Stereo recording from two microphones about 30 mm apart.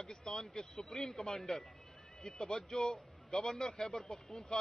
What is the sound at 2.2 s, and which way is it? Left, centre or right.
A man's voice, left.